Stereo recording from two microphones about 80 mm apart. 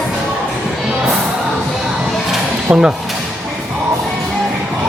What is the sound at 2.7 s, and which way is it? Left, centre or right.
Speech, centre.